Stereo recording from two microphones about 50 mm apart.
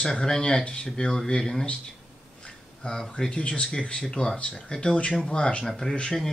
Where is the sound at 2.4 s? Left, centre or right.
Centre.